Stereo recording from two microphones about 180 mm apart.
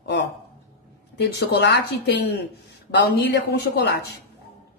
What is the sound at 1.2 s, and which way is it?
Speech, 70° left (ahead or behind).